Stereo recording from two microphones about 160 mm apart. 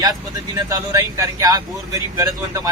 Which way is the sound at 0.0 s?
25° right (ahead or behind).